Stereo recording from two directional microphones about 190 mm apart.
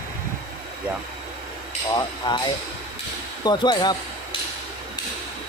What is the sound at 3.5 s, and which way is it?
Speech, 20° left (ahead or behind).